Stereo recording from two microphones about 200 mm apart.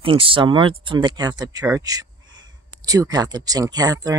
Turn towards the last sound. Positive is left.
turn(degrees=-20)  # may be behind; listen again after turning